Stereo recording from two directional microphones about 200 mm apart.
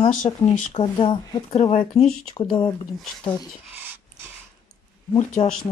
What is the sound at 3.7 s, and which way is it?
Dog, 10° right (ahead or behind).